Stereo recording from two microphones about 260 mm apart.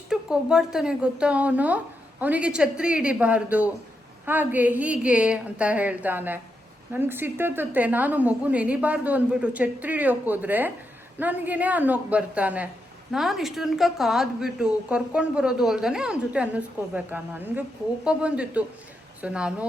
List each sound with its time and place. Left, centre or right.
0.1 s a woman's voice: centre